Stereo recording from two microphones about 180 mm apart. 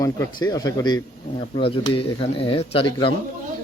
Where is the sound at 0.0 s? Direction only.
20° left (ahead or behind).